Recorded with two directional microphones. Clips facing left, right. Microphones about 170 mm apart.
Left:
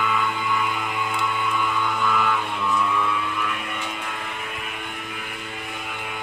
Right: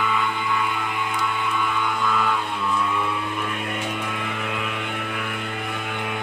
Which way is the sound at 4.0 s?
60° right (ahead or behind).